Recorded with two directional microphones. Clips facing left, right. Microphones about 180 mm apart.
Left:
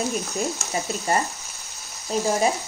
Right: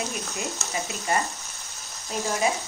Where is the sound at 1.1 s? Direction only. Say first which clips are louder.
Left 3 dB; 35° left (ahead or behind).